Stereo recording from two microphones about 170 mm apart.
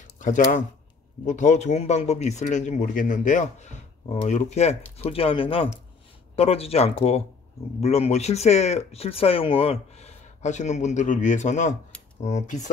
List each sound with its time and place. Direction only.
0.2 s speech: 50° left (ahead or behind)